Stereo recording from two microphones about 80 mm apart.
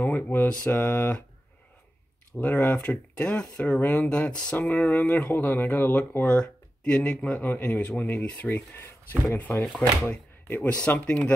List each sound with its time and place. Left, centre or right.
0.0 s mantra: left
0.7 s speech: left
2.3 s speech: left
6.2 s speech: centre
9.3 s speech: left
9.8 s speech: centre